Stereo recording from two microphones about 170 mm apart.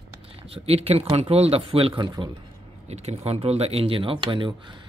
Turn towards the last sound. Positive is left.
turn(degrees=-30)  # may be behind; listen again after turning